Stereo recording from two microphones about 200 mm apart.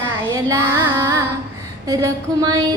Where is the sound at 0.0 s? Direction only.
15° right (ahead or behind).